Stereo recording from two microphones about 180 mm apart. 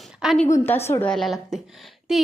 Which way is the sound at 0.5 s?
10° left (ahead or behind).